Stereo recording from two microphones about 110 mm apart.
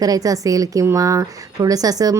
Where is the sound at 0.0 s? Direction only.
35° right (ahead or behind).